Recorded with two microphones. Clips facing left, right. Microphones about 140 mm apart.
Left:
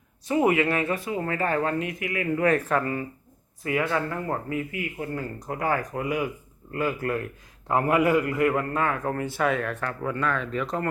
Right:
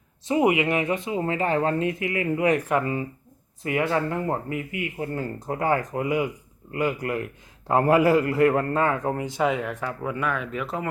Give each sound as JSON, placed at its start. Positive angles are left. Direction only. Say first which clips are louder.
{"t": 0.3, "sound": "a man's voice", "louder": "right 1 dB", "side_deg": -20}
{"t": 7.7, "sound": "a man's voice", "louder": "right 3 dB", "side_deg": -30}